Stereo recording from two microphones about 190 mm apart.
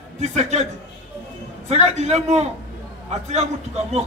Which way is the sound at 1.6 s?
35° right (ahead or behind).